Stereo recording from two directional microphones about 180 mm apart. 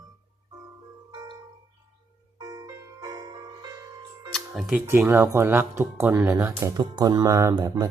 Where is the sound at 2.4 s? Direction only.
20° right (ahead or behind).